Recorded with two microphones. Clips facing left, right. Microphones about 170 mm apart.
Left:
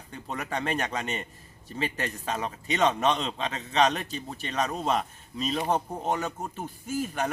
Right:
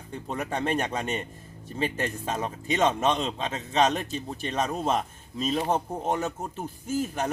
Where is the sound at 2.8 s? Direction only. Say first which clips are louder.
Even; 5° right (ahead or behind).